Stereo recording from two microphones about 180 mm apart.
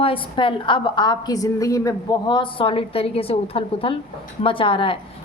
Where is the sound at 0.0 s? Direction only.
30° left (ahead or behind).